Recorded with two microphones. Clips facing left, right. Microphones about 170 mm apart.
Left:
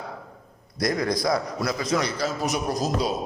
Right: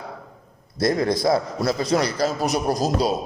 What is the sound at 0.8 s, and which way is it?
A man's voice, 25° right (ahead or behind).